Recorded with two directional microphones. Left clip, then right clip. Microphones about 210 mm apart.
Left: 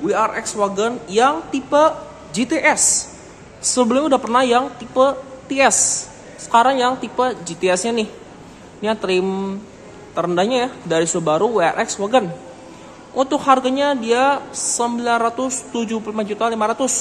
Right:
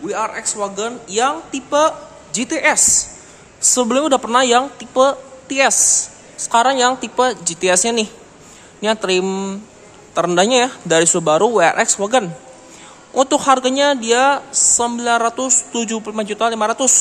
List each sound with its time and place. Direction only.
0.0 s a man's voice: 5° right (ahead or behind); by 17.0 s 20° right (ahead or behind)